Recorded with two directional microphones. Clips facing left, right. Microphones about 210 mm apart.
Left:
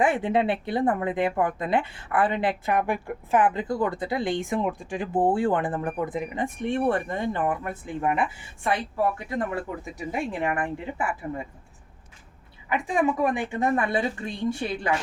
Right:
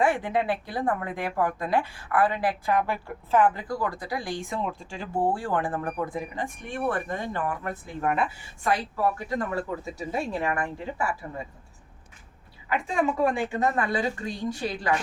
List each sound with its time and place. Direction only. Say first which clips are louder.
0.0 s speech: left 2 dB; 20° left (ahead or behind)
12.6 s speech: left 2 dB; 15° left (ahead or behind)